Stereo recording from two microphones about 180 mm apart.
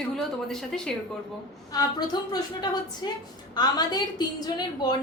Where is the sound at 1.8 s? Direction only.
20° left (ahead or behind).